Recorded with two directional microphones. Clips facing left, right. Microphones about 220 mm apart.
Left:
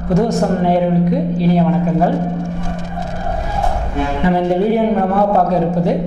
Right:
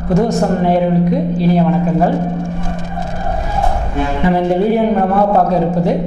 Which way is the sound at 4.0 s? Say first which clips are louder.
Right 1 dB; 15° right (ahead or behind).